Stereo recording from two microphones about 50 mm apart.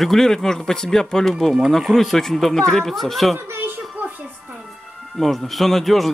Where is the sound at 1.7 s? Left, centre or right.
Centre.